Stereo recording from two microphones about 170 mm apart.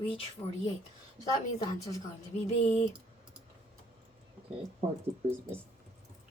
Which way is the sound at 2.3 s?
40° left (ahead or behind).